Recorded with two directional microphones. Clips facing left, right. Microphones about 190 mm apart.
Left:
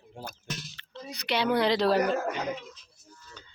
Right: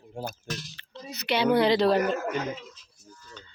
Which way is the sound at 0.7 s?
5° right (ahead or behind).